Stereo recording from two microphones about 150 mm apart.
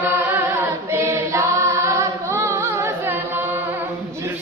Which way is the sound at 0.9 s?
20° right (ahead or behind).